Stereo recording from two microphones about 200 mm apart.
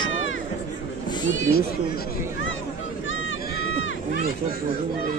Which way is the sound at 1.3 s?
65° left (ahead or behind).